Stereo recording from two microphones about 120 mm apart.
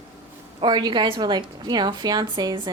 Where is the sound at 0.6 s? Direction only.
40° right (ahead or behind).